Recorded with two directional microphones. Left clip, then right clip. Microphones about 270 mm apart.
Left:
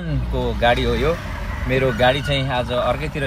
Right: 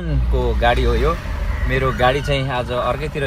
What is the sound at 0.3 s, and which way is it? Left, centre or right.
Speech, centre.